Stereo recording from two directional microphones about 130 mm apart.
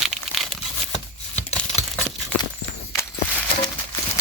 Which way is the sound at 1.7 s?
5° right (ahead or behind).